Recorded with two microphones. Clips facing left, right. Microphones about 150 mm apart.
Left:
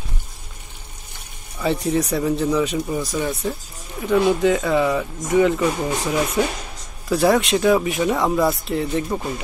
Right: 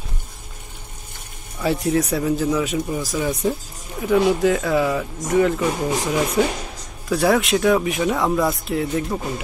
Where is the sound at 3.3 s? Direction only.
15° right (ahead or behind).